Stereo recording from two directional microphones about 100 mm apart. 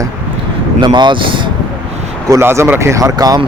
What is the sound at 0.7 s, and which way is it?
Speech, 50° right (ahead or behind).